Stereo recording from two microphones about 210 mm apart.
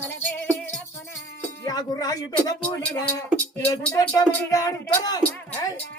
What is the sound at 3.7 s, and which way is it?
Speech, 10° left (ahead or behind).